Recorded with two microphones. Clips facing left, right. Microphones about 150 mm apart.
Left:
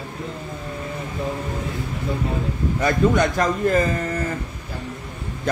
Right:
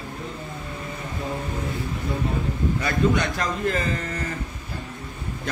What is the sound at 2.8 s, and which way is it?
Speech, 45° left (ahead or behind).